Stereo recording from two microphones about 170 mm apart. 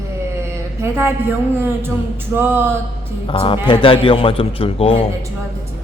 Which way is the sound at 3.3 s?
30° left (ahead or behind).